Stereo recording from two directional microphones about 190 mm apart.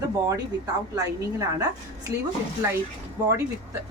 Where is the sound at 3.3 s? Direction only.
15° right (ahead or behind).